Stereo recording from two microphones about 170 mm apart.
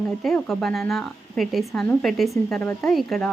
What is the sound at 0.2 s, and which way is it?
Speech, 5° left (ahead or behind).